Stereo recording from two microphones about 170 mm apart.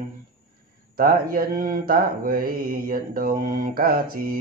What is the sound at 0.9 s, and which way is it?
Mantra, 60° right (ahead or behind).